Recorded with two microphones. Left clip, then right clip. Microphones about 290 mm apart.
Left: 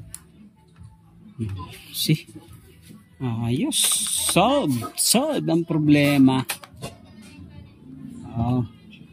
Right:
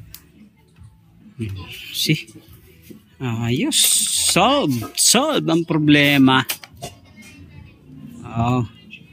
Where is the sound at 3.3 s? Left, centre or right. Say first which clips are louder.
Right 4 dB; centre.